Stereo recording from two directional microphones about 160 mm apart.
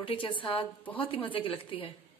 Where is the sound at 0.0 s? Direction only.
35° left (ahead or behind).